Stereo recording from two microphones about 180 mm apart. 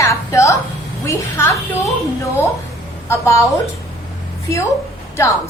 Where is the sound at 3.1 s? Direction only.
15° left (ahead or behind).